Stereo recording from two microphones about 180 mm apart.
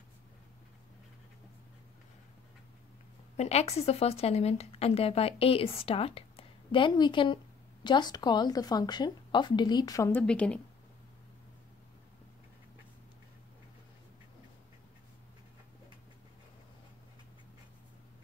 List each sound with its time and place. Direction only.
3.3 s a woman's voice: 35° left (ahead or behind); by 10.2 s 15° left (ahead or behind)
10.2 s a woman's voice: 5° left (ahead or behind)